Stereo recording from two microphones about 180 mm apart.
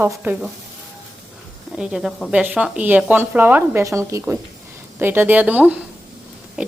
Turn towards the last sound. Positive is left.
turn(degrees=-5)  # may be behind; listen again after turning